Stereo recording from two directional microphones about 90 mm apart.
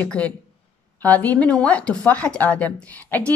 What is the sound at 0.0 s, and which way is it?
Speech, 15° left (ahead or behind).